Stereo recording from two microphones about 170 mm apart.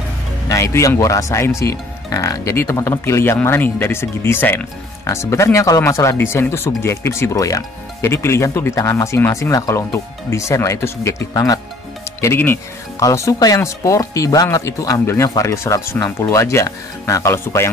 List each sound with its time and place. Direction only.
0.5 s speech: 20° left (ahead or behind)